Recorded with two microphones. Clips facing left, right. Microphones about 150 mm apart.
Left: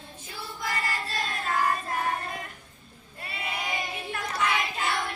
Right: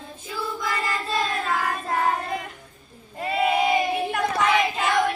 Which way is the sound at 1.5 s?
90° right.